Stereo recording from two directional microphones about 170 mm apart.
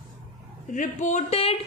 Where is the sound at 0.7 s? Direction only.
50° left (ahead or behind).